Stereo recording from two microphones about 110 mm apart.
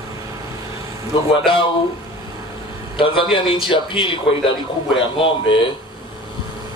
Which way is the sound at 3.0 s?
50° left (ahead or behind).